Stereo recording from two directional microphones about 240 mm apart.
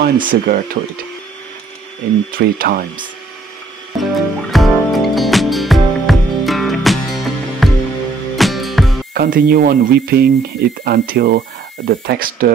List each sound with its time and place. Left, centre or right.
0.0 s speech: right
2.3 s speech: right
4.0 s music: centre
9.1 s speech: right